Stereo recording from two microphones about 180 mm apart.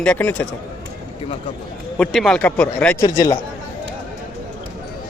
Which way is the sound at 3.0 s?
20° left (ahead or behind).